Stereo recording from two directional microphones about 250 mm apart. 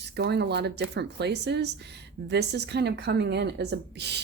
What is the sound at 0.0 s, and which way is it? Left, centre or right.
Speech, right.